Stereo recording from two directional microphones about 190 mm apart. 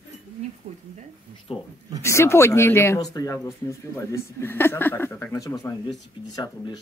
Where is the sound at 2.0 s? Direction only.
15° left (ahead or behind).